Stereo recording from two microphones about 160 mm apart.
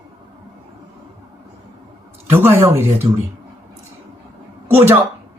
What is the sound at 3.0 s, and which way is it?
Speech, 35° right (ahead or behind).